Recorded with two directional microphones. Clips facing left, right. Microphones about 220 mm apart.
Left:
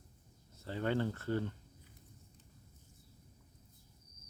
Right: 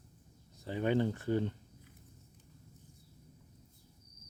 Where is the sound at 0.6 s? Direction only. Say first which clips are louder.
Right 4 dB; 15° right (ahead or behind).